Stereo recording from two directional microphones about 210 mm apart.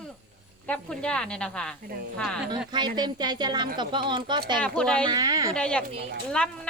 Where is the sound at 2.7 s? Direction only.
20° right (ahead or behind).